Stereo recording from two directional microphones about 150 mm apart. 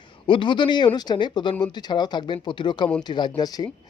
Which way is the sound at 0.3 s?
30° left (ahead or behind).